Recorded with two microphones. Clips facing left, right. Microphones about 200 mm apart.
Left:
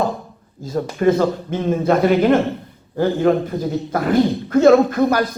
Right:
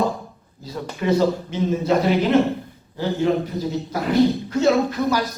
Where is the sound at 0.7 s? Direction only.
50° left (ahead or behind).